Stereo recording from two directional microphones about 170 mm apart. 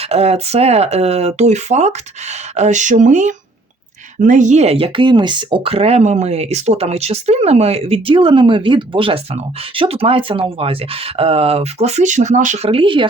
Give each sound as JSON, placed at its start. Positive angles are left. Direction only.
{"t": 0.0, "sound": "speech", "side_deg": -40}